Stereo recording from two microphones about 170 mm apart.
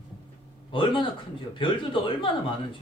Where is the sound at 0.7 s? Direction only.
30° left (ahead or behind).